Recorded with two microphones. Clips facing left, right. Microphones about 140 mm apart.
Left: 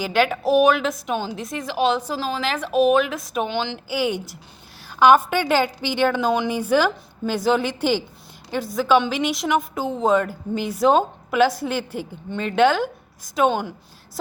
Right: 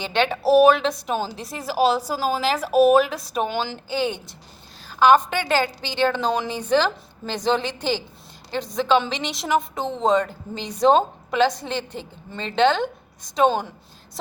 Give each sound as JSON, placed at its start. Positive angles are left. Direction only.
{"t": 0.0, "sound": "a woman's voice", "side_deg": 5}
{"t": 0.3, "sound": "a woman's voice", "side_deg": -35}
{"t": 0.7, "sound": "a woman's voice", "side_deg": 0}
{"t": 1.5, "sound": "a woman's voice", "side_deg": -35}
{"t": 3.3, "sound": "a woman's voice", "side_deg": 0}
{"t": 3.8, "sound": "a woman's voice", "side_deg": 10}